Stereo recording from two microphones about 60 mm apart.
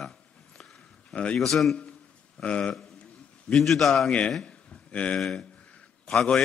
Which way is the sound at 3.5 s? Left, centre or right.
Centre.